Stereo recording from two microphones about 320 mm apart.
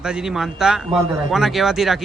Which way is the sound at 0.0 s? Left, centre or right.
Centre.